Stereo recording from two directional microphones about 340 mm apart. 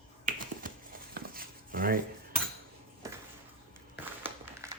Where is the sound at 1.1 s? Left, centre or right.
Right.